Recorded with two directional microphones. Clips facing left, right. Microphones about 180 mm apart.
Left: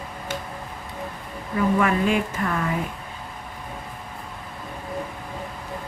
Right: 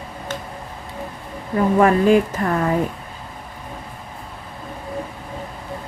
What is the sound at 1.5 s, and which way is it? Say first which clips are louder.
Speech: right 5 dB; 40° right (ahead or behind).